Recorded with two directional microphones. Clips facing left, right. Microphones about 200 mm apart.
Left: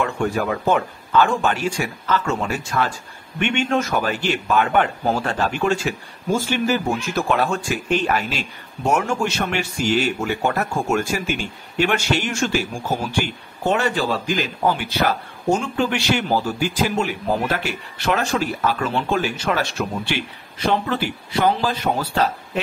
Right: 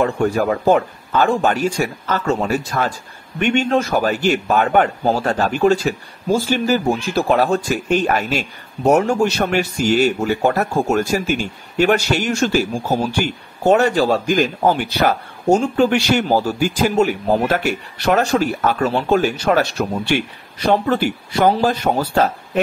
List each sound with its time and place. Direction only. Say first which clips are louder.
0.0 s speech: right 5 dB; 40° right (ahead or behind)